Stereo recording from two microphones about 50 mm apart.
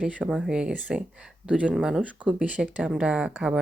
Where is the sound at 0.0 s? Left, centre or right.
Right.